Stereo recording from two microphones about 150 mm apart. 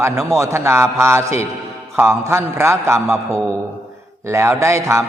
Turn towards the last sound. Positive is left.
turn(degrees=-20)  # may be behind; listen again after turning